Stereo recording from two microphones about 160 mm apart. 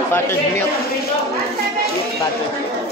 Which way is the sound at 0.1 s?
15° left (ahead or behind).